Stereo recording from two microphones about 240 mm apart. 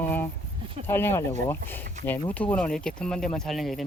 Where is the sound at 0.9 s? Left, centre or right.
Centre.